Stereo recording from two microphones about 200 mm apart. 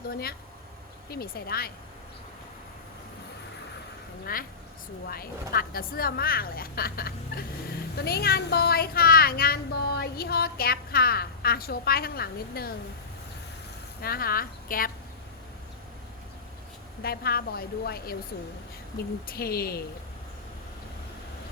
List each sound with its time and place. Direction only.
1.1 s speech: 50° left (ahead or behind)
4.3 s speech: 45° left (ahead or behind)
14.0 s speech: 50° left (ahead or behind)
17.0 s speech: 50° left (ahead or behind)
19.3 s speech: 50° left (ahead or behind)